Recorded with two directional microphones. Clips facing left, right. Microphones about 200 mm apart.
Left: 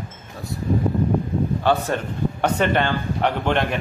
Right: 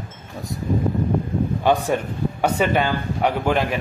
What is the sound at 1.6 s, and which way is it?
A man's voice, 15° right (ahead or behind).